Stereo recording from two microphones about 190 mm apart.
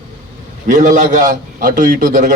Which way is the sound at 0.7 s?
40° right (ahead or behind).